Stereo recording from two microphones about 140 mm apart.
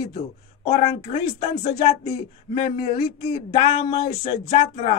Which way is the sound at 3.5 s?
50° left (ahead or behind).